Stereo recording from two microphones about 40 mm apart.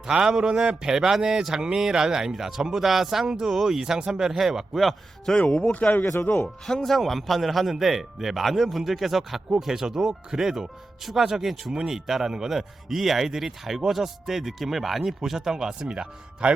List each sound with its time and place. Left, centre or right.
0.0 s a man's voice: centre
5.5 s a man's voice: centre
5.7 s a man's voice: left
6.2 s speech: left
6.8 s a man's voice: centre
15.2 s speech: centre